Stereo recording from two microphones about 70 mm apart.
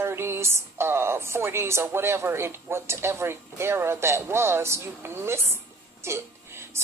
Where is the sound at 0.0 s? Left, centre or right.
Right.